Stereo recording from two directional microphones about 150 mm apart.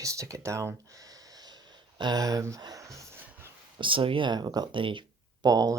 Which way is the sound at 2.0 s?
25° right (ahead or behind).